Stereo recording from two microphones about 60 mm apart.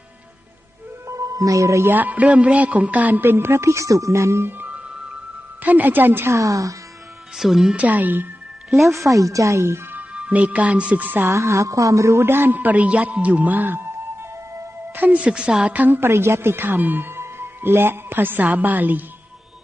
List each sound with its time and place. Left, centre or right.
1.0 s music: right
1.9 s a man's voice: right
4.4 s music: right
5.6 s a man's voice: right
6.3 s speech: right
7.3 s speech: centre
7.8 s a man's voice: right
8.9 s speech: right
9.9 s a woman's voice: right
11.3 s a man's voice: right
14.9 s a woman's voice: right
16.0 s speech: right